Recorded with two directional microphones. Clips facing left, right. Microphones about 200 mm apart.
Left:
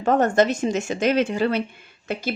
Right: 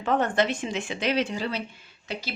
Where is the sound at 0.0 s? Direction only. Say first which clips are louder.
Left 6 dB; 45° left (ahead or behind).